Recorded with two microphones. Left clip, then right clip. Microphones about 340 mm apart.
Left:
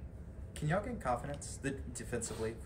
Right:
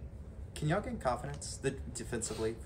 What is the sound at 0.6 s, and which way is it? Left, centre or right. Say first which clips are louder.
Speech: right 2 dB; centre.